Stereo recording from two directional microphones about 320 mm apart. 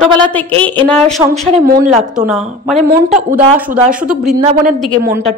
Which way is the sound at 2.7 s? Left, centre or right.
Right.